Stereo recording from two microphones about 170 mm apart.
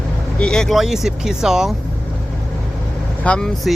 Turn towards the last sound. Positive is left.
turn(degrees=5)  # may be behind; listen again after turning